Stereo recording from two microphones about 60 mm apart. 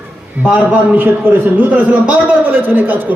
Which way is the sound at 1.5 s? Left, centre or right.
Right.